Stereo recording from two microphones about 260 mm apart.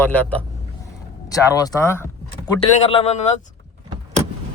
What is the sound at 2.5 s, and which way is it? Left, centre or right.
Speech, left.